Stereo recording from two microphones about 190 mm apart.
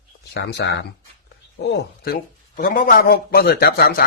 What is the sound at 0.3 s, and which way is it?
Speech, 60° left (ahead or behind).